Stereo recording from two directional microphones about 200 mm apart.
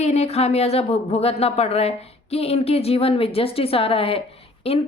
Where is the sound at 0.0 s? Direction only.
35° left (ahead or behind).